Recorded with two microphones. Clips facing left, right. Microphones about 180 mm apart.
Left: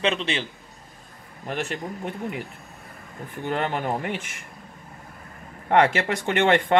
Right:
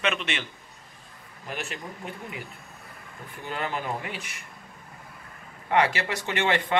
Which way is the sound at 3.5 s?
55° left (ahead or behind).